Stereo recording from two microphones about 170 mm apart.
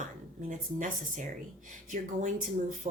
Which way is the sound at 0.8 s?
50° right (ahead or behind).